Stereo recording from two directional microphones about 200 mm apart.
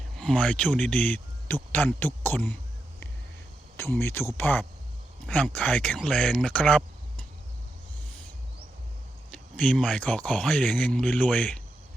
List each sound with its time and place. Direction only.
0.2 s speech: 5° left (ahead or behind)
3.8 s speech: 10° left (ahead or behind)
9.3 s speech: 5° left (ahead or behind)